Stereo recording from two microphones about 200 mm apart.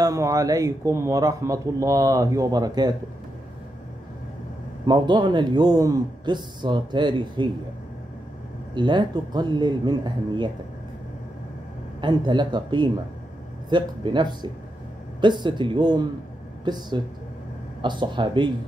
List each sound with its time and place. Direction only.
0.0 s speech: 15° right (ahead or behind)
4.8 s a man's voice: 20° right (ahead or behind)
8.7 s a man's voice: 25° right (ahead or behind)
12.0 s a man's voice: 20° right (ahead or behind)